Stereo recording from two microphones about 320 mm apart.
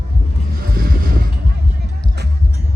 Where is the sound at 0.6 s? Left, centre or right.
Right.